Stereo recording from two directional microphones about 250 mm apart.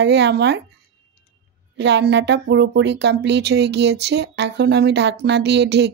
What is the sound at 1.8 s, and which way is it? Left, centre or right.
A woman's voice, right.